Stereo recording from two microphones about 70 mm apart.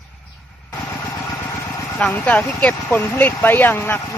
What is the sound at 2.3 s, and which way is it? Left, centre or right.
Speech, left.